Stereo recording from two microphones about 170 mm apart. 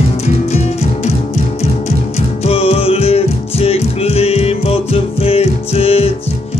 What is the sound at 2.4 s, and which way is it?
Music, 35° left (ahead or behind).